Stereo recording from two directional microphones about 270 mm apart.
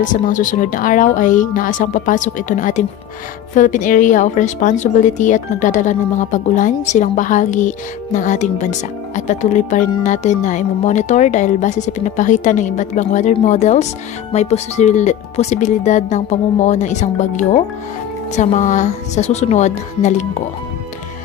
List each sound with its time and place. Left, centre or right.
0.0 s speech: left